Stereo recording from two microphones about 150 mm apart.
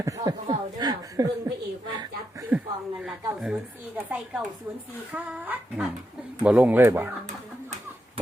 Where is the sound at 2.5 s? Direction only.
10° right (ahead or behind).